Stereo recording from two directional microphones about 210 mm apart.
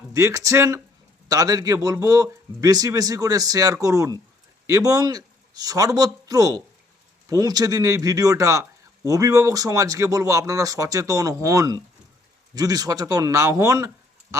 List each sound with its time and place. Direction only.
0.1 s a man's voice: 15° right (ahead or behind)